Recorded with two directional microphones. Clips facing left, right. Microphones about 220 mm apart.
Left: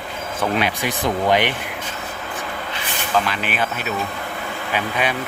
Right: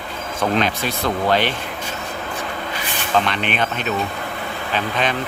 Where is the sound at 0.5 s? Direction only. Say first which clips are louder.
Right 1 dB; 10° left (ahead or behind).